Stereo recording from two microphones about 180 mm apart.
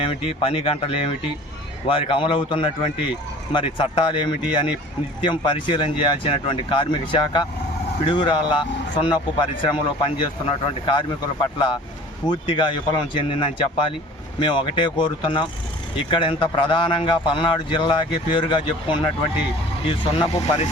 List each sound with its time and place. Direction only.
0.1 s speech: 30° left (ahead or behind)